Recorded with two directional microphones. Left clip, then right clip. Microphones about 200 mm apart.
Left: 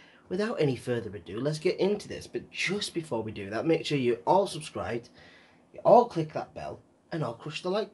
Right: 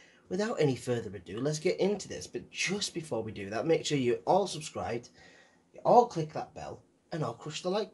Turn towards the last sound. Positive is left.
turn(degrees=-5)  # may be behind; listen again after turning